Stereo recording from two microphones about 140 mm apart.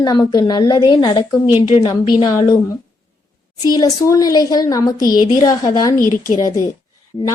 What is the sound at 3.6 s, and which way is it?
A child's voice, 30° left (ahead or behind).